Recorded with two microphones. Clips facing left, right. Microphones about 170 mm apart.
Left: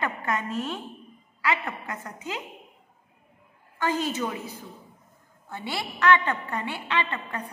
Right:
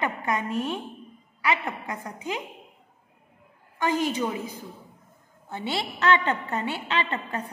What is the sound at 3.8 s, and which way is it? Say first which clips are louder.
Speech: right 2 dB; 15° right (ahead or behind).